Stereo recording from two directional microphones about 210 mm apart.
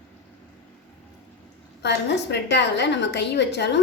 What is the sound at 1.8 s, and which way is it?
A woman's voice, 55° left (ahead or behind).